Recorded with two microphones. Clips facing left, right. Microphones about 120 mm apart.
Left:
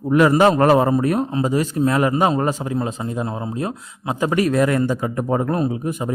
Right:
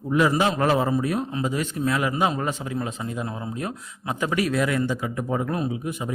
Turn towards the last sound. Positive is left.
turn(degrees=45)  # may be behind; listen again after turning